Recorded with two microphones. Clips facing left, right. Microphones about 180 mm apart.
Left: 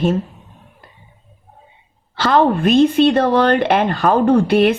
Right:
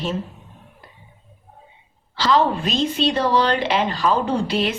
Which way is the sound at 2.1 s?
55° left (ahead or behind).